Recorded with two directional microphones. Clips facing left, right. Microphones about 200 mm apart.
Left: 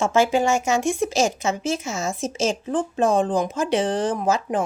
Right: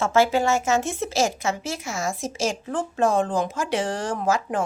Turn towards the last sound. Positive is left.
turn(degrees=20)  # may be behind; listen again after turning